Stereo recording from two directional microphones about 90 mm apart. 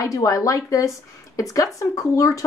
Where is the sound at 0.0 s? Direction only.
40° left (ahead or behind).